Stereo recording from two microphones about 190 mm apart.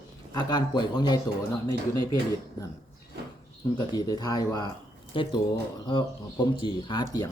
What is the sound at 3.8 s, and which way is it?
A man's voice, 20° left (ahead or behind).